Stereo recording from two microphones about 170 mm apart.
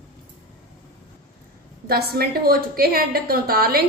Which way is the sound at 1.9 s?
65° right (ahead or behind).